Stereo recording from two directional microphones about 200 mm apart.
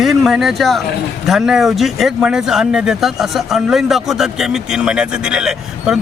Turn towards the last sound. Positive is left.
turn(degrees=-5)  # may be behind; listen again after turning